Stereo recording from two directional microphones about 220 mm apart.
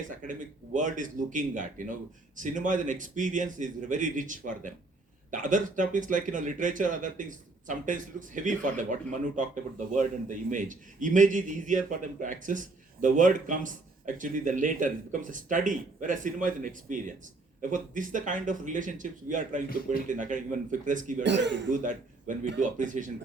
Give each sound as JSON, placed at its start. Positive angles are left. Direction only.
{"t": 0.1, "sound": "speech", "side_deg": -35}
{"t": 19.7, "sound": "a man's voice", "side_deg": 40}
{"t": 20.1, "sound": "speech", "side_deg": -35}
{"t": 21.2, "sound": "speech", "side_deg": -55}
{"t": 21.7, "sound": "a man's voice", "side_deg": -35}